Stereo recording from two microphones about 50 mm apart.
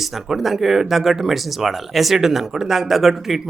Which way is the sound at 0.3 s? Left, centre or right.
Centre.